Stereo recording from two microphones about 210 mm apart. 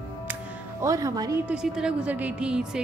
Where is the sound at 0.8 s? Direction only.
15° right (ahead or behind).